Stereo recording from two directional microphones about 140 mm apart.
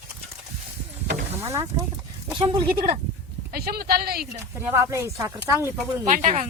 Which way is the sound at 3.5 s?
90° right.